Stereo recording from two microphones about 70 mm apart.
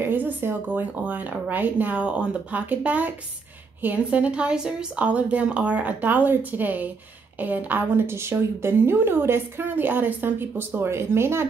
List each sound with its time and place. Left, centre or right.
0.0 s a woman's voice: right